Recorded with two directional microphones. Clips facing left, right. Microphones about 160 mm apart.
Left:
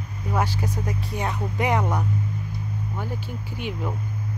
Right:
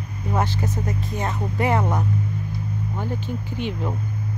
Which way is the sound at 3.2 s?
10° left (ahead or behind).